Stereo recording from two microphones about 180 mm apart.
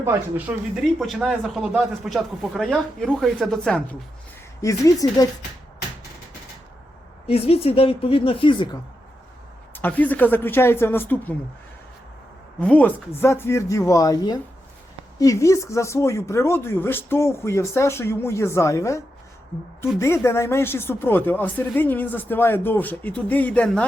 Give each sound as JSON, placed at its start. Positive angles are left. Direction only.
{"t": 0.0, "sound": "speech", "side_deg": -10}
{"t": 0.9, "sound": "speech", "side_deg": 0}
{"t": 4.6, "sound": "speech", "side_deg": 20}
{"t": 7.3, "sound": "a woman's voice", "side_deg": 35}
{"t": 9.7, "sound": "speech", "side_deg": 10}
{"t": 12.5, "sound": "speech", "side_deg": 10}